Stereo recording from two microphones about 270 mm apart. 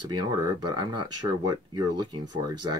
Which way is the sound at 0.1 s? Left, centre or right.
Centre.